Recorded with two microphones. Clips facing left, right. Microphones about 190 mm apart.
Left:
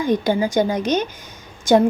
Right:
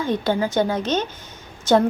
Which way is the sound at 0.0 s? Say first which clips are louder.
Left 3 dB; 15° left (ahead or behind).